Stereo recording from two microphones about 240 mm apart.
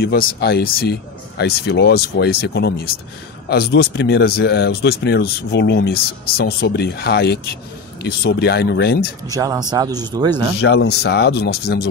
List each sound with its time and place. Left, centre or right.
0.0 s speech: left
9.3 s speech: centre
10.6 s speech: left